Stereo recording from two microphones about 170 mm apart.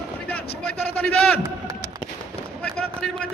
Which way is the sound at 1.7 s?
20° right (ahead or behind).